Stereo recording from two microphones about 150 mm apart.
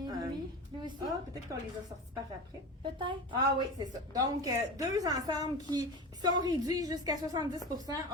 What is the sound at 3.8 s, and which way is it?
A woman's voice, 25° right (ahead or behind).